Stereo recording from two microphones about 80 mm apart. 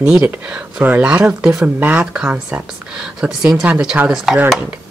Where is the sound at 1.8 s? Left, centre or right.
Right.